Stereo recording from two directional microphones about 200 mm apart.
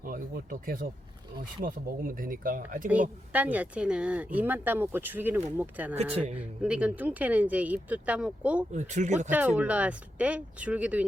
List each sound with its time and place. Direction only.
0.0 s speech: 45° right (ahead or behind)
3.3 s speech: 10° right (ahead or behind)
8.7 s speech: 35° right (ahead or behind)
9.3 s speech: 10° right (ahead or behind)